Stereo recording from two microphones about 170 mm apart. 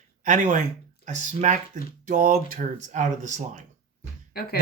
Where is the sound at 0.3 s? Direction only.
45° right (ahead or behind).